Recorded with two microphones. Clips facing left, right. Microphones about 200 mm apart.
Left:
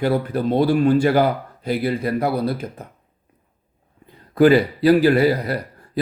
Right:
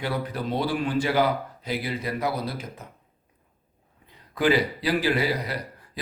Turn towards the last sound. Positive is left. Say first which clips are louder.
# left 8 dB
turn(degrees=55)  # may be behind; listen again after turning